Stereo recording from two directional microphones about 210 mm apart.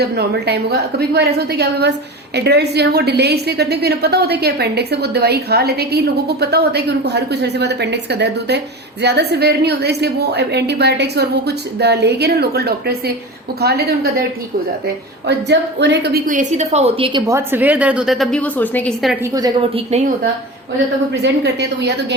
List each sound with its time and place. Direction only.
0.0 s a woman's voice: 50° right (ahead or behind)
15.3 s a woman's voice: 55° right (ahead or behind); by 19.1 s 5° left (ahead or behind)
19.2 s a woman's voice: 15° right (ahead or behind)
19.7 s a woman's voice: 30° right (ahead or behind)
21.1 s a woman's voice: 55° right (ahead or behind)